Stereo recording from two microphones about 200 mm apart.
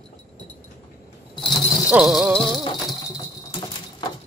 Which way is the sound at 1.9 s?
5° right (ahead or behind).